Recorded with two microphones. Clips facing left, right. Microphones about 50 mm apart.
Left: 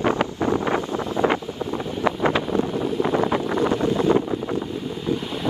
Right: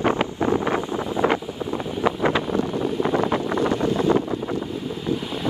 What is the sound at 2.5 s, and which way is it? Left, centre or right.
Wind noise, centre.